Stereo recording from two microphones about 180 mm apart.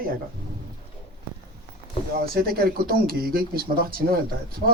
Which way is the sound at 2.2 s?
55° right (ahead or behind).